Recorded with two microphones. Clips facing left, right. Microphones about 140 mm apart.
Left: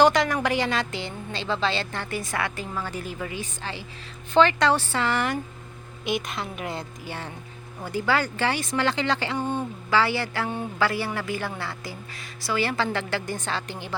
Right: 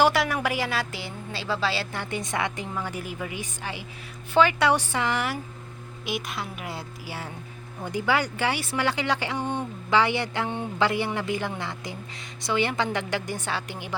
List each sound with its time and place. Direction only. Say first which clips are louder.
0.0 s a woman's voice: left 2 dB; 5° right (ahead or behind)